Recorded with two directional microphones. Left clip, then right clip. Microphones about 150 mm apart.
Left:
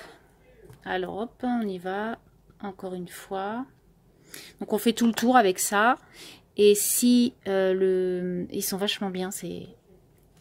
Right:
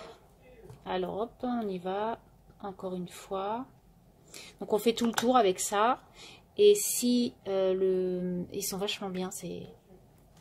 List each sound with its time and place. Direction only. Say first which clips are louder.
0.8 s speech: left 3 dB; 40° left (ahead or behind)